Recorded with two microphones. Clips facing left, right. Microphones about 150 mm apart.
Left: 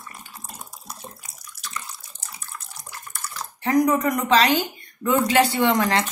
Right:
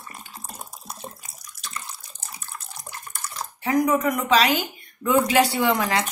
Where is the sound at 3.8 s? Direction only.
5° right (ahead or behind).